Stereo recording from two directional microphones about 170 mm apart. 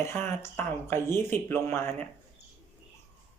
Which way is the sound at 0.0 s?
15° left (ahead or behind).